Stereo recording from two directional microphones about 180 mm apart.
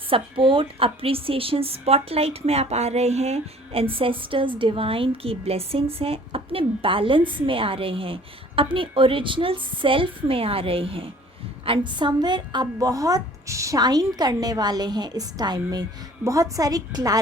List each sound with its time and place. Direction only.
0.1 s a woman's voice: 30° right (ahead or behind)